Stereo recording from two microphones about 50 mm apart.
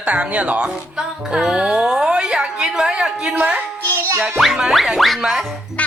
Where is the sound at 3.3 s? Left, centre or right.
Right.